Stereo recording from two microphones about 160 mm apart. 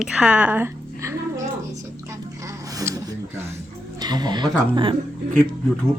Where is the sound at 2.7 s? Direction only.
20° right (ahead or behind).